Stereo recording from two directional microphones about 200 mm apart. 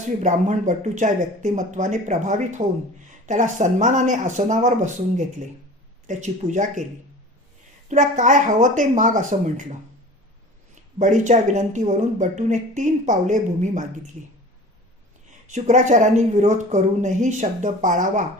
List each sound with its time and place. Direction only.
0.2 s speech: 35° right (ahead or behind)
7.9 s speech: 35° right (ahead or behind)
10.9 s speech: 40° right (ahead or behind)
15.4 s speech: 35° right (ahead or behind)